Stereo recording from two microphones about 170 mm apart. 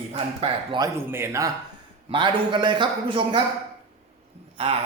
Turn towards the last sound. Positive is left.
turn(degrees=-35)  # may be behind; listen again after turning